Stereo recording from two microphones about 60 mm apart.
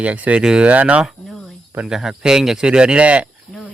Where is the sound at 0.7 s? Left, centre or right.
Right.